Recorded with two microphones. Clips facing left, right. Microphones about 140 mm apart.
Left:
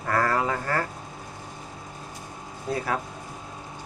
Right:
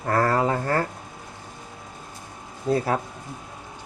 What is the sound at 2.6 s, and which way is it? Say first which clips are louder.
Speech: right 5 dB; 30° right (ahead or behind).